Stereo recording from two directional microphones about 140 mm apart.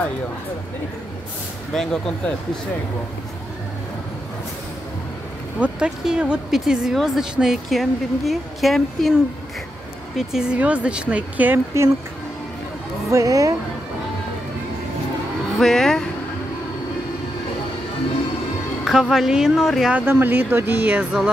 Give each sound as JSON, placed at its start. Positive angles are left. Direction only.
{"t": 1.7, "sound": "speech", "side_deg": 5}
{"t": 5.6, "sound": "speech", "side_deg": -5}
{"t": 10.1, "sound": "speech", "side_deg": -5}
{"t": 13.1, "sound": "a woman's voice", "side_deg": -25}
{"t": 15.6, "sound": "speech", "side_deg": 5}
{"t": 18.9, "sound": "speech", "side_deg": 0}